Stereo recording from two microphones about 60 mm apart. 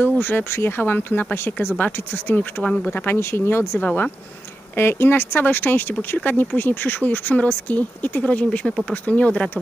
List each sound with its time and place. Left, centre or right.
0.0 s speech: left
2.6 s speech: left
3.1 s speech: left
4.7 s speech: left
8.5 s speech: centre
9.0 s speech: left